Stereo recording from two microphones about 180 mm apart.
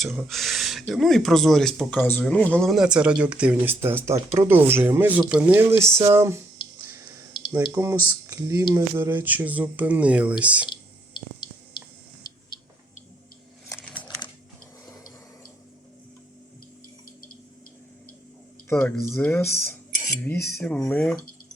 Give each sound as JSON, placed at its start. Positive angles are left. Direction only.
{"t": 0.0, "sound": "speech", "side_deg": 0}
{"t": 7.5, "sound": "speech", "side_deg": -15}
{"t": 13.7, "sound": "crumpling", "side_deg": 10}
{"t": 18.7, "sound": "speech", "side_deg": 15}
{"t": 20.6, "sound": "speech", "side_deg": 5}